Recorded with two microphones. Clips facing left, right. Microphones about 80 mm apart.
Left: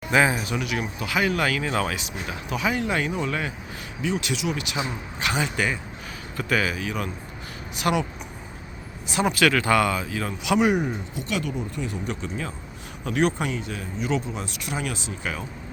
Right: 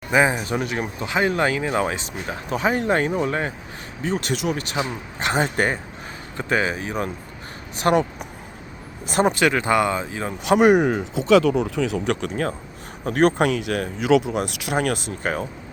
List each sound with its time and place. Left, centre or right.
0.1 s speech: centre
0.4 s speech: right
5.4 s speech: right
6.3 s speech: right
9.2 s speech: right
10.6 s speech: right
11.5 s speech: right
13.1 s speech: right
13.5 s speech: right